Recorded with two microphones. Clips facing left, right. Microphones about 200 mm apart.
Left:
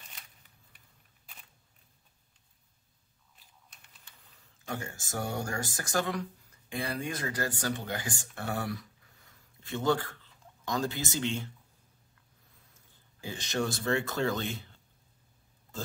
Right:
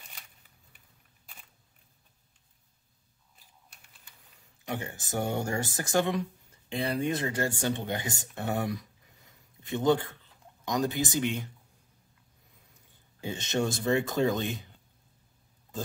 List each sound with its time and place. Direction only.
3.7 s speech: 15° right (ahead or behind)
13.2 s speech: 25° right (ahead or behind)